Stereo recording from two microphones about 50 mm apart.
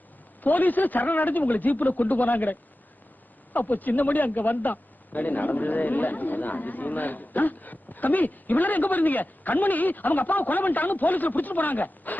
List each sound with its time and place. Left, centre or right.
0.4 s a man's voice: left